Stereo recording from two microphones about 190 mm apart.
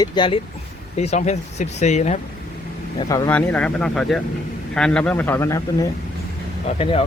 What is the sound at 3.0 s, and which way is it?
Speech, 20° left (ahead or behind).